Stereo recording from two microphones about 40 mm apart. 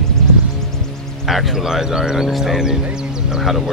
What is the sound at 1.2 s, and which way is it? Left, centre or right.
Speech, centre.